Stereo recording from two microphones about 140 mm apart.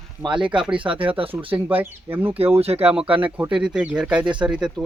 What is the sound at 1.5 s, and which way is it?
Speech, 20° right (ahead or behind).